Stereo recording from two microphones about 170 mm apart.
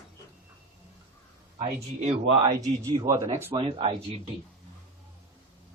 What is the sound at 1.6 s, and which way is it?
Speech, 35° right (ahead or behind).